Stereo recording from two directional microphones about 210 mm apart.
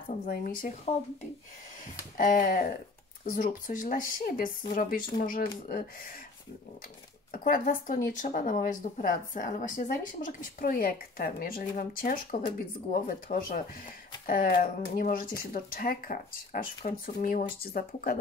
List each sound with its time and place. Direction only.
0.3 s speech: 40° left (ahead or behind)
2.1 s speech: 40° left (ahead or behind)
7.3 s speech: 40° left (ahead or behind)